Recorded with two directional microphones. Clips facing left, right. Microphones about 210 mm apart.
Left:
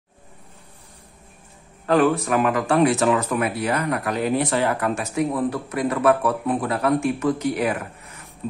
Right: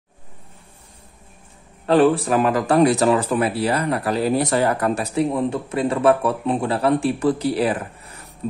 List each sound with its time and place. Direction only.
1.9 s speech: 30° right (ahead or behind)